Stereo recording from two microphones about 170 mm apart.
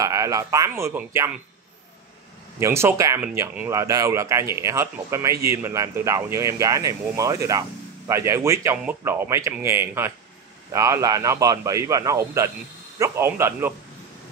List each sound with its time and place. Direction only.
0.0 s speech: 20° right (ahead or behind)
2.6 s a man's voice: 15° right (ahead or behind)